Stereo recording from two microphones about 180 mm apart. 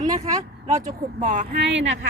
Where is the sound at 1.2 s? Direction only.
80° right.